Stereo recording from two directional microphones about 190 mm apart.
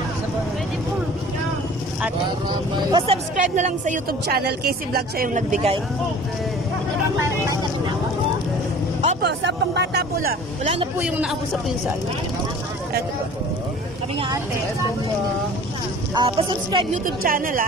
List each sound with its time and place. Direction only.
2.9 s speech: 30° right (ahead or behind)
3.3 s a woman's voice: 40° right (ahead or behind)
4.5 s speech: 55° right (ahead or behind); by 5.8 s 35° right (ahead or behind)
7.2 s vehicle: 15° right (ahead or behind)
9.2 s speech: 65° right (ahead or behind)
10.6 s a woman's voice: 30° right (ahead or behind)
11.0 s a man's voice: 5° right (ahead or behind)
16.2 s speech: 30° right (ahead or behind)
16.9 s speech: 45° right (ahead or behind)